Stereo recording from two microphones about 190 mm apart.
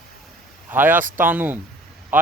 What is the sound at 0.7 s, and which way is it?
A man's voice, 10° right (ahead or behind).